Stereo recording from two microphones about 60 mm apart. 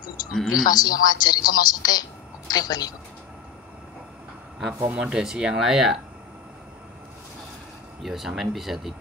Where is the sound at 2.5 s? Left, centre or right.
Left.